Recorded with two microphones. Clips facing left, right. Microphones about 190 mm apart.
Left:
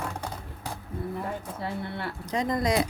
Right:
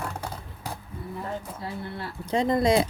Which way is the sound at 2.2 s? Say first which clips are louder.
Right 5 dB; 30° right (ahead or behind).